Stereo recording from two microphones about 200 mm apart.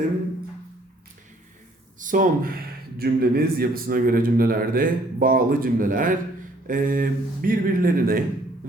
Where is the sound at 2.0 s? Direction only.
40° right (ahead or behind).